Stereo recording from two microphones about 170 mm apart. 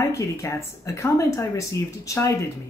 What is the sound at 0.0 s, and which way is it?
Speech, 20° left (ahead or behind).